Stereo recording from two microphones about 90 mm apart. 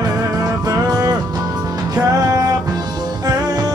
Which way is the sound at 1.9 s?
40° right (ahead or behind).